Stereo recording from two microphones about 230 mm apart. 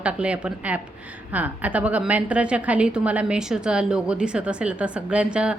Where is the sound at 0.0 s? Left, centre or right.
Centre.